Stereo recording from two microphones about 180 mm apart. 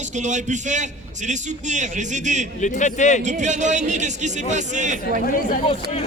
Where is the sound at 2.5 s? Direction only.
45° left (ahead or behind).